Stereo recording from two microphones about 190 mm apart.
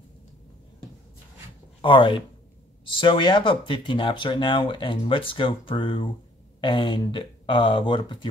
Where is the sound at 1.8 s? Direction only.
25° left (ahead or behind).